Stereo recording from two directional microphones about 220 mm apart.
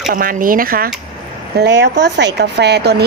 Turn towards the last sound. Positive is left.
turn(degrees=-50)  # may be behind; listen again after turning